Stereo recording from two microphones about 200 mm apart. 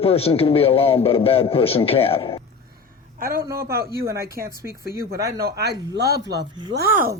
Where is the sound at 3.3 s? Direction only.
15° right (ahead or behind).